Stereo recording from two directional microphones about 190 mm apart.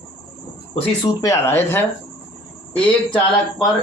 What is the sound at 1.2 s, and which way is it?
Speech, 15° left (ahead or behind).